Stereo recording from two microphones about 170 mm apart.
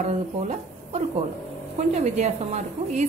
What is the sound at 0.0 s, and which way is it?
A woman's voice, 45° right (ahead or behind).